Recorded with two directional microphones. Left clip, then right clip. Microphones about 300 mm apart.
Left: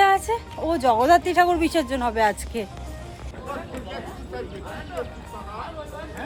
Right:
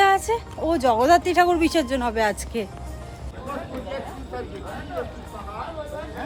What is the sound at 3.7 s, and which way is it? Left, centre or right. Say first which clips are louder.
Chatter: right 3 dB; centre.